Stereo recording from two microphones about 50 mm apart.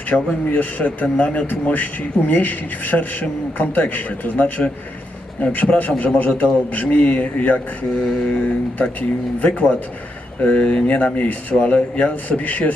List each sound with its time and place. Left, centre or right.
0.1 s a man's voice: centre
0.5 s a man's voice: left
10.4 s a man's voice: left